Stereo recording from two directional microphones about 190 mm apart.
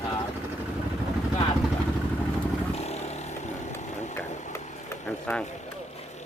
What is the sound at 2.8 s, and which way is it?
Chainsaw, 35° left (ahead or behind).